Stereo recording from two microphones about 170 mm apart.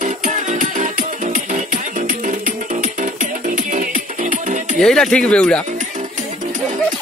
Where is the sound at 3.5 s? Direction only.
50° right (ahead or behind).